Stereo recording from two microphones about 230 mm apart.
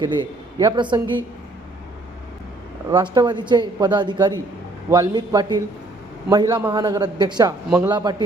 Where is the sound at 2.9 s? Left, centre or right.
Centre.